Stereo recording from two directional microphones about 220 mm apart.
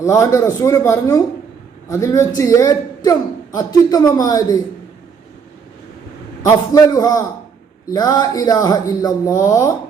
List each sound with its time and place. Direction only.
0.0 s a man's voice: 15° left (ahead or behind)
6.4 s a man's voice: 15° left (ahead or behind)